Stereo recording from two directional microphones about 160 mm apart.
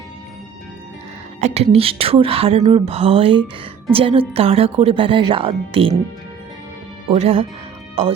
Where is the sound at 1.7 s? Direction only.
35° right (ahead or behind).